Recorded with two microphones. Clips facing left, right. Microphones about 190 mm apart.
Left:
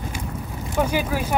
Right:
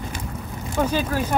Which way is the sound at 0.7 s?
10° left (ahead or behind).